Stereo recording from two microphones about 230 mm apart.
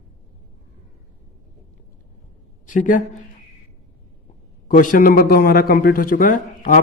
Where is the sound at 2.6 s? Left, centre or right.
Left.